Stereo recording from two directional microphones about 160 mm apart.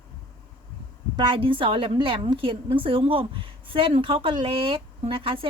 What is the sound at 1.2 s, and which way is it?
A woman's voice, 35° right (ahead or behind).